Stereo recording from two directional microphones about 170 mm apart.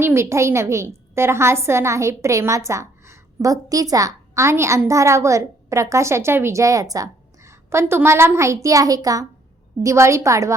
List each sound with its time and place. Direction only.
0.0 s a woman's voice: 15° right (ahead or behind)